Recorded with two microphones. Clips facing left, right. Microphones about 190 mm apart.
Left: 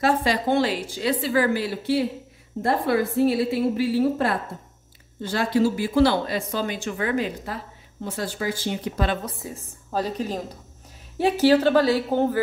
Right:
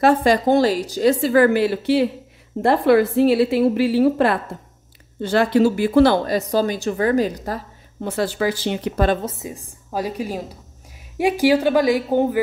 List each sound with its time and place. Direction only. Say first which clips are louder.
0.0 s a woman's voice: right 6 dB; 50° right (ahead or behind)
8.0 s speech: right 7 dB; 75° right (ahead or behind)
9.2 s a woman's voice: right 5 dB; 20° right (ahead or behind)